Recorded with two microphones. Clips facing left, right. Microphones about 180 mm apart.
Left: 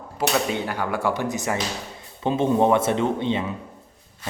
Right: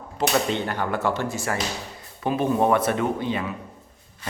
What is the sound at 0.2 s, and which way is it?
Speech, 10° left (ahead or behind).